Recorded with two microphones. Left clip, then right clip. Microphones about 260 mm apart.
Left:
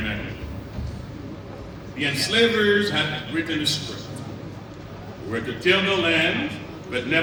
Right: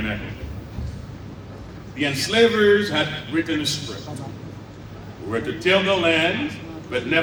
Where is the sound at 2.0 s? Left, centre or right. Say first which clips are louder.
Right 2 dB; centre.